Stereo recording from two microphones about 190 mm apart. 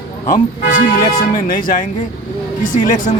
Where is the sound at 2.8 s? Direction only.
40° left (ahead or behind).